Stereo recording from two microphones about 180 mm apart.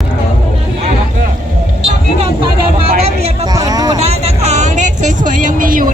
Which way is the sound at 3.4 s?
20° right (ahead or behind).